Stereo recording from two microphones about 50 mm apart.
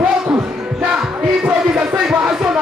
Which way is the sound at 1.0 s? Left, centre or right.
Centre.